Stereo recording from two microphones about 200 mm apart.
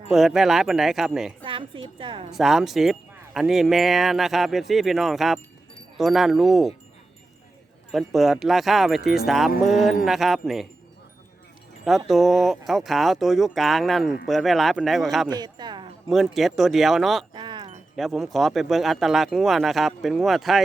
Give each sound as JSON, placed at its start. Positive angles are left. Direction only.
{"t": 0.1, "sound": "speech", "side_deg": 0}
{"t": 1.5, "sound": "a woman's voice", "side_deg": -25}
{"t": 2.3, "sound": "speech", "side_deg": 0}
{"t": 7.9, "sound": "speech", "side_deg": 0}
{"t": 11.9, "sound": "speech", "side_deg": 0}
{"t": 15.3, "sound": "a sound", "side_deg": -20}
{"t": 16.0, "sound": "speech", "side_deg": 0}
{"t": 17.3, "sound": "wind chime", "side_deg": -25}
{"t": 17.9, "sound": "speech", "side_deg": 0}